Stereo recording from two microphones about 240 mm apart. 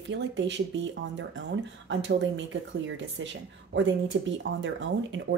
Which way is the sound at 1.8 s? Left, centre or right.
Right.